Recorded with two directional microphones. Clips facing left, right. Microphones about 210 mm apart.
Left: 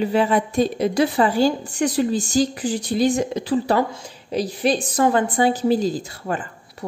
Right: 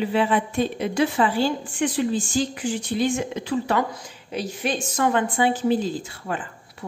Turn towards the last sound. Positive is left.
turn(degrees=40)  # may be behind; listen again after turning